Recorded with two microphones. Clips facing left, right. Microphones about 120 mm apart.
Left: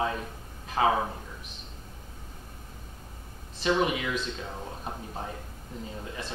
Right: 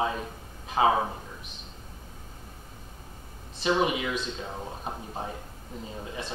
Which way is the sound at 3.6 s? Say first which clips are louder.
Right 1 dB; 15° right (ahead or behind).